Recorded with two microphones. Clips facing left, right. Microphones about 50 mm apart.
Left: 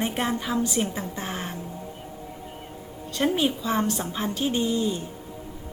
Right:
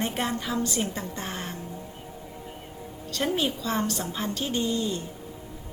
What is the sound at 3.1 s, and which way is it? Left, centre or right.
A woman's voice, centre.